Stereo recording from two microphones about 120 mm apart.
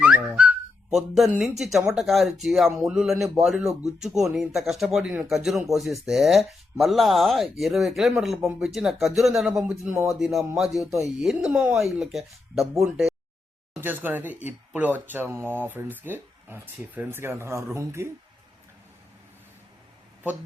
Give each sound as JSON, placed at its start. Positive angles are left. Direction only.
{"t": 0.0, "sound": "a sound", "side_deg": -10}
{"t": 0.9, "sound": "speech", "side_deg": 0}
{"t": 13.8, "sound": "speech", "side_deg": -15}